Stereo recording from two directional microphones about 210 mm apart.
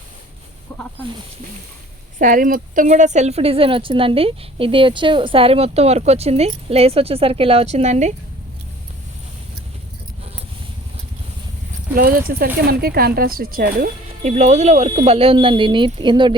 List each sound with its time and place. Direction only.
0.7 s speech: centre (ahead or behind)
2.1 s speech: 40° right (ahead or behind)
11.9 s speech: 45° right (ahead or behind); by 16.3 s 20° right (ahead or behind)